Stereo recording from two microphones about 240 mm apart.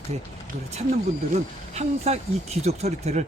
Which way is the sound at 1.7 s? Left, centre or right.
Right.